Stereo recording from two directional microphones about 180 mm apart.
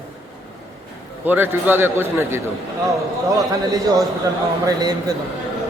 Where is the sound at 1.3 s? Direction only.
10° right (ahead or behind).